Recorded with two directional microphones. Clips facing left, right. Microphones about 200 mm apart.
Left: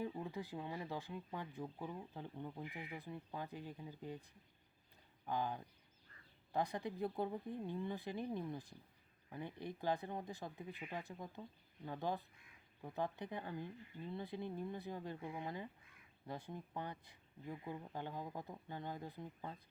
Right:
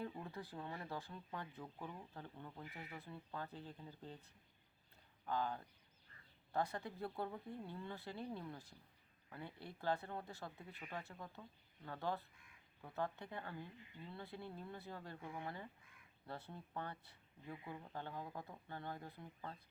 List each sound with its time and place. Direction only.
0.0 s speech: 15° left (ahead or behind)